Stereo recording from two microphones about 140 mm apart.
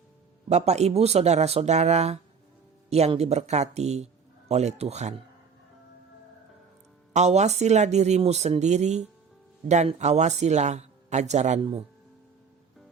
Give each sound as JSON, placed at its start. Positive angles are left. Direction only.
{"t": 0.4, "sound": "speech", "side_deg": -50}
{"t": 7.1, "sound": "a man's voice", "side_deg": -55}